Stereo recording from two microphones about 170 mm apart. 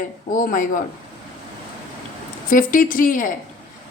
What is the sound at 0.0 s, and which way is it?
Speech, 55° left (ahead or behind).